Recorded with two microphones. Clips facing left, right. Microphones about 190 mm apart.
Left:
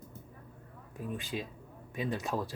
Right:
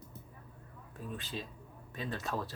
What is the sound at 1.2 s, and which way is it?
Speech, 15° left (ahead or behind).